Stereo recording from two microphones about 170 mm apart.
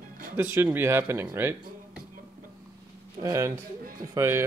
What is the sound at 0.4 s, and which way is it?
Speech, 10° right (ahead or behind).